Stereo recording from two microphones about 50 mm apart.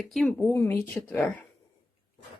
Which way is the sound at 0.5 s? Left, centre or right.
Left.